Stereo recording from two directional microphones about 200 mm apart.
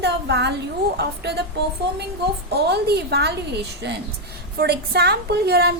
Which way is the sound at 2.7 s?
55° right (ahead or behind).